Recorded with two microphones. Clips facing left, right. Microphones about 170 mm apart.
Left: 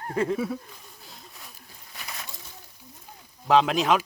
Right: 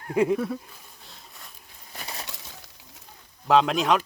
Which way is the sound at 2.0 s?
30° right (ahead or behind).